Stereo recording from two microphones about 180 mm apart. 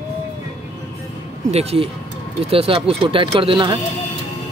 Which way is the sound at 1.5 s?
35° right (ahead or behind).